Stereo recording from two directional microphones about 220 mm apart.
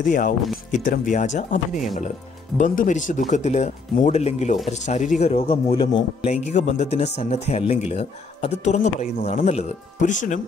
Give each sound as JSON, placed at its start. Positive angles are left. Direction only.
{"t": 0.7, "sound": "speech", "side_deg": 35}